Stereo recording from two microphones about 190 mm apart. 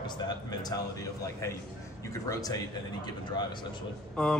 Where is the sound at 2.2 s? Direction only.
20° left (ahead or behind).